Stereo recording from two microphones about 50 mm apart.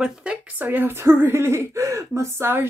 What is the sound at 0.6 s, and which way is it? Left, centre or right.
Speech, right.